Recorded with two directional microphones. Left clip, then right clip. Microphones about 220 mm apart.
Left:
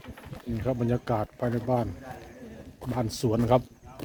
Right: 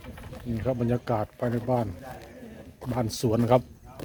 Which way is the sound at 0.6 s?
5° right (ahead or behind).